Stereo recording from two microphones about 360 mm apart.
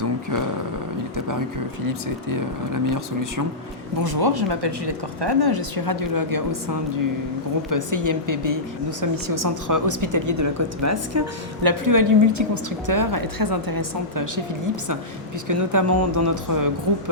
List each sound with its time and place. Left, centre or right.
1.1 s a woman's voice: right
4.0 s a woman's voice: right
11.6 s a woman's voice: right
15.4 s a woman's voice: right